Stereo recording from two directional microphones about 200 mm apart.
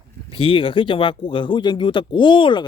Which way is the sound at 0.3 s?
25° left (ahead or behind).